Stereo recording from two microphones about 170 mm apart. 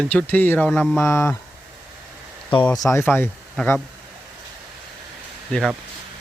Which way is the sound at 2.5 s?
25° left (ahead or behind).